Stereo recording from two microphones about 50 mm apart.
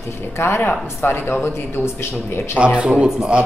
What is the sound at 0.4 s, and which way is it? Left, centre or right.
Speech, left.